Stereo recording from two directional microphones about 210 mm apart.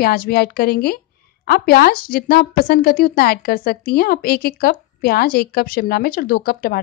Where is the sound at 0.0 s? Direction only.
45° left (ahead or behind).